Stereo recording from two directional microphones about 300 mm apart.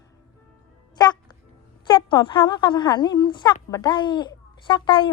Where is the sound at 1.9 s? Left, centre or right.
Centre.